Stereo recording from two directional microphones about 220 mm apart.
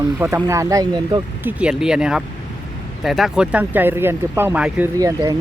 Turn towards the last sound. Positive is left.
turn(degrees=-15)  # may be behind; listen again after turning